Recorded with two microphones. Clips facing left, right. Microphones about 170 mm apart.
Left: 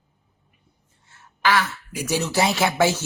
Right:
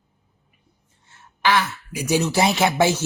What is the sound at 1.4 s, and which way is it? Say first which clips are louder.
Speech: right 1 dB; 20° right (ahead or behind).